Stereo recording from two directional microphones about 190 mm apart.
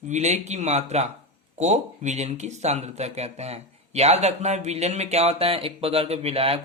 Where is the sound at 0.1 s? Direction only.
35° right (ahead or behind).